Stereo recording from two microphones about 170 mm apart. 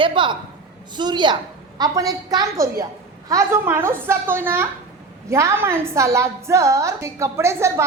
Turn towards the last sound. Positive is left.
turn(degrees=-15)  # may be behind; listen again after turning